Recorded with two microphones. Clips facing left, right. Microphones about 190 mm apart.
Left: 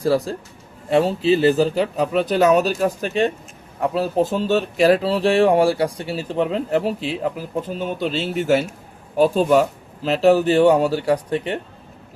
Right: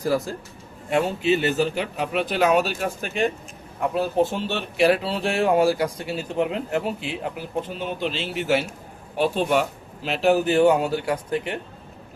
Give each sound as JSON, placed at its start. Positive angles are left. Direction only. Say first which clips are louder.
{"t": 0.0, "sound": "speech", "louder": "left 4 dB", "side_deg": 30}